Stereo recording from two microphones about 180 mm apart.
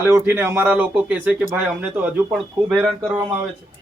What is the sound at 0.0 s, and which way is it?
Speech, 10° right (ahead or behind).